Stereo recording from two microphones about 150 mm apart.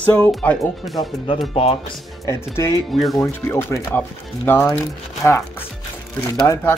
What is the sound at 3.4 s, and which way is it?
Speech, 15° left (ahead or behind).